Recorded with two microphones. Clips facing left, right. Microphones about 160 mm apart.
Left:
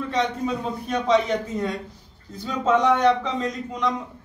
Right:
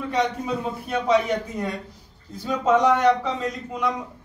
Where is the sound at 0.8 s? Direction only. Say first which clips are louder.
Even; 10° right (ahead or behind).